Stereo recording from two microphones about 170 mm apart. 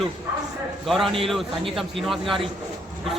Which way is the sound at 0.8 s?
Centre (ahead or behind).